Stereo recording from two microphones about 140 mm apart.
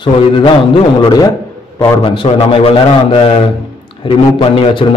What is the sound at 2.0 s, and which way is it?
A man's voice, 40° left (ahead or behind).